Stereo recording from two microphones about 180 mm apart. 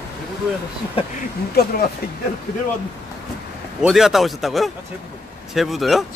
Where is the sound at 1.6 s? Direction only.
60° left (ahead or behind).